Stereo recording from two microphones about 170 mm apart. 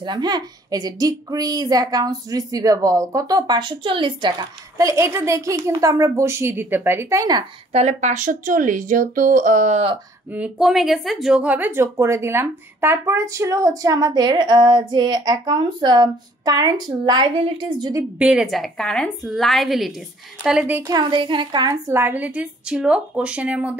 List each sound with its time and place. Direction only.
0.0 s speech: 25° right (ahead or behind)
7.7 s speech: 45° right (ahead or behind)
10.3 s speech: 5° right (ahead or behind); by 18.0 s 25° right (ahead or behind)
18.2 s a woman's voice: 5° right (ahead or behind)